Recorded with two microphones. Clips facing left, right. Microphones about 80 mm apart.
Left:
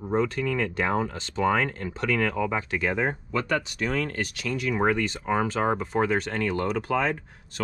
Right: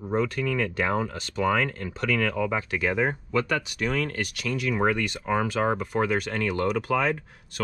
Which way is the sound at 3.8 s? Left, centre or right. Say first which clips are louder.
Right 2 dB; left.